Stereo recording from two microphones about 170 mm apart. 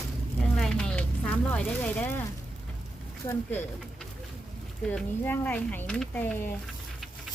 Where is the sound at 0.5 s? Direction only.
5° left (ahead or behind).